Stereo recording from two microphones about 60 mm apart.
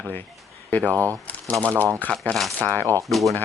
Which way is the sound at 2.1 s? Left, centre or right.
Centre.